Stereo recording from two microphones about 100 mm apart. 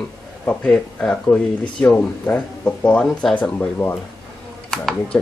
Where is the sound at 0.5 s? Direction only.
10° left (ahead or behind).